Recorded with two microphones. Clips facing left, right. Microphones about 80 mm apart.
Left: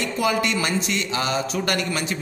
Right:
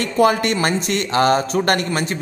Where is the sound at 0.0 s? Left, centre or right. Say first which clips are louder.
Right 6 dB; right.